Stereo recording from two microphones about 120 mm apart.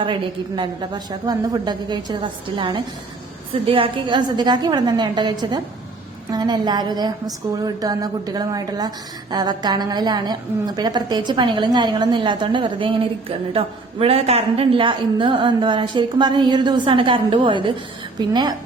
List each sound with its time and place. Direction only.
0.0 s a woman's voice: 40° right (ahead or behind)